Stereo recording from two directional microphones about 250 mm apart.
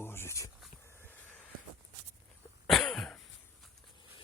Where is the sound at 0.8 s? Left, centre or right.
Centre.